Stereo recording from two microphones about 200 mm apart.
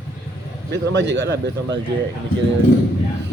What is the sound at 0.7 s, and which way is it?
Speech, 60° right (ahead or behind).